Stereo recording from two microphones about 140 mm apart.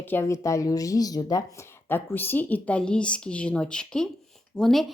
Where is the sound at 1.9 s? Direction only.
15° left (ahead or behind).